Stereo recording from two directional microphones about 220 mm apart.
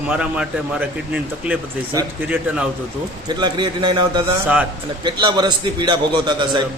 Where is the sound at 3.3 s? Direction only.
20° right (ahead or behind).